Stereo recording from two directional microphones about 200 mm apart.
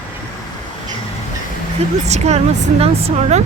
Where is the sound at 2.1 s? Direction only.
35° right (ahead or behind).